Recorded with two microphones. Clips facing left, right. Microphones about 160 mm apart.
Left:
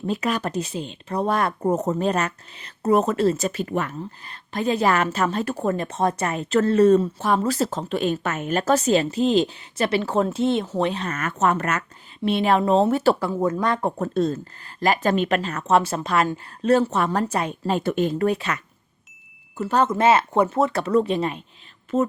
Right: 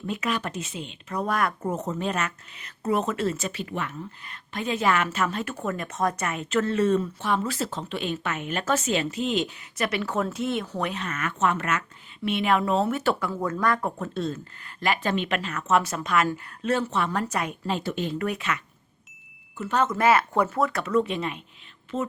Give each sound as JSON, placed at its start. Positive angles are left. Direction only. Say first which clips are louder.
{"t": 0.0, "sound": "speech", "louder": "left 4 dB", "side_deg": 35}
{"t": 1.7, "sound": "speech", "louder": "left 6 dB", "side_deg": 45}
{"t": 13.3, "sound": "speech", "louder": "left 3 dB", "side_deg": 20}
{"t": 14.0, "sound": "speech", "louder": "left 7 dB", "side_deg": 40}
{"t": 17.7, "sound": "speech", "louder": "left 9 dB", "side_deg": 50}
{"t": 18.2, "sound": "speech", "louder": "left 6 dB", "side_deg": 35}